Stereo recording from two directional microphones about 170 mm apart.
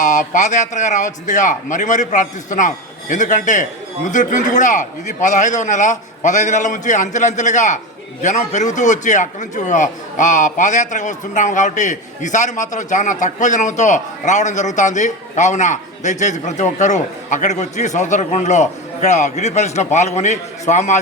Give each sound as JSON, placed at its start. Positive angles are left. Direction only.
{"t": 0.0, "sound": "a man's voice", "side_deg": 50}